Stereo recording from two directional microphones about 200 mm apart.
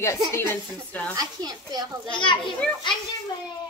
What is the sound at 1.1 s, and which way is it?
Speech, 20° right (ahead or behind).